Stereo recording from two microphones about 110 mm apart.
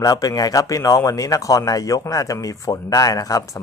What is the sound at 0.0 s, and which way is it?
Speech, 30° left (ahead or behind).